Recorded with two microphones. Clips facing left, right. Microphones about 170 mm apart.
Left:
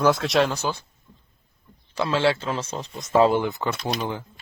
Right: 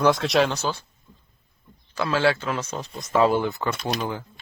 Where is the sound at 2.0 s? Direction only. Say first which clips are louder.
Even; 25° left (ahead or behind).